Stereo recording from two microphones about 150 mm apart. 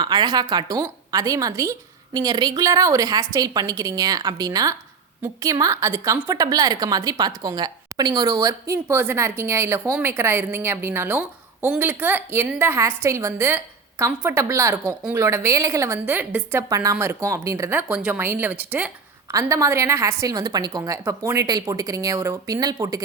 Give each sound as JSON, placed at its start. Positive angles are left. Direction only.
{"t": 0.0, "sound": "a woman's voice", "side_deg": -30}